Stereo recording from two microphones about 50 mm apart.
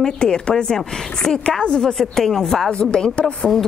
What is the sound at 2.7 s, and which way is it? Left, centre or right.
Speech, left.